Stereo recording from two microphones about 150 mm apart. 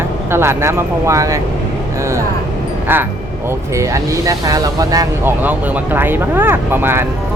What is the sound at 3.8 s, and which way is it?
Speech, 20° right (ahead or behind).